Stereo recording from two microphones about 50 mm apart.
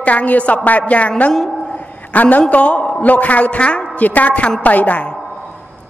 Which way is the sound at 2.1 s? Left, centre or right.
Left.